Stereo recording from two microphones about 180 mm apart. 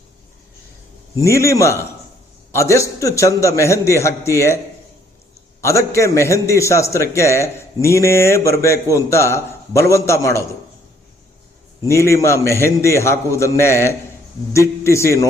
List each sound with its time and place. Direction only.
1.2 s a man's voice: 15° left (ahead or behind)
5.6 s a man's voice: 15° left (ahead or behind)
11.9 s a man's voice: 15° left (ahead or behind)